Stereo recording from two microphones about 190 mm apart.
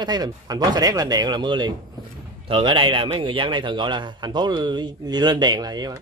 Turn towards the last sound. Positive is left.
turn(degrees=-20)  # may be behind; listen again after turning